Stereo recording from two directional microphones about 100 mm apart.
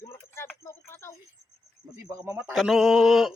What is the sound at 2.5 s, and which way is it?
Speech, centre (ahead or behind).